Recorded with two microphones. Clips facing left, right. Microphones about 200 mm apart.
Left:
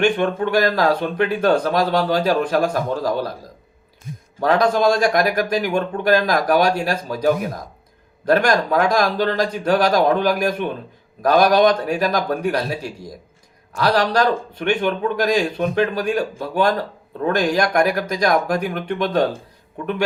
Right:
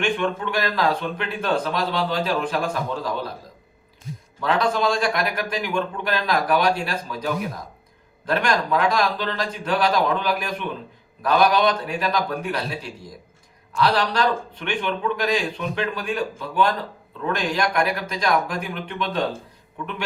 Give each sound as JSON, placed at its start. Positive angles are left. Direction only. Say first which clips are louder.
{"t": 0.0, "sound": "speech", "louder": "left 5 dB", "side_deg": 45}
{"t": 4.4, "sound": "a man's voice", "louder": "left 5 dB", "side_deg": 40}